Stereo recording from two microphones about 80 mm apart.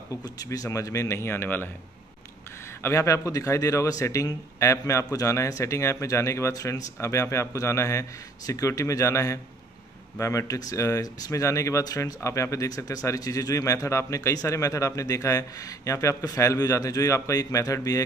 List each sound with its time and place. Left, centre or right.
0.2 s speech: left
0.7 s a man's voice: left
2.8 s a man's voice: left